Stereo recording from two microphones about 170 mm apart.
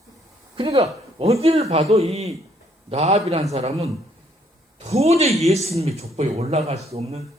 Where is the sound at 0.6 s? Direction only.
35° right (ahead or behind).